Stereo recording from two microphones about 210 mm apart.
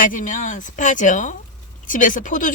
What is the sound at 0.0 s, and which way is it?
Speech, 40° left (ahead or behind).